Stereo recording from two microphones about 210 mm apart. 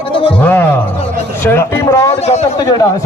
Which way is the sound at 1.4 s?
10° left (ahead or behind).